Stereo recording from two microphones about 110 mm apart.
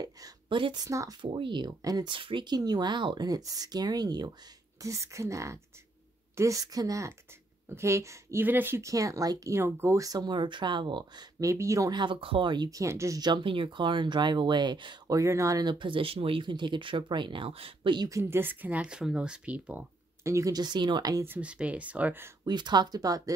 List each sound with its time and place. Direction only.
0.5 s speech: 50° right (ahead or behind)
0.8 s speech: 30° right (ahead or behind)
1.2 s speech: 50° right (ahead or behind)
11.3 s speech: 30° right (ahead or behind)
11.9 s speech: 45° right (ahead or behind); by 13.2 s 25° right (ahead or behind)
13.2 s speech: 45° right (ahead or behind)
15.0 s speech: 30° right (ahead or behind)
15.6 s speech: 45° right (ahead or behind)
17.9 s speech: 35° right (ahead or behind)
18.2 s speech: 20° right (ahead or behind)
20.2 s speech: 30° right (ahead or behind)
21.3 s speech: 10° right (ahead or behind)
22.4 s speech: 40° right (ahead or behind)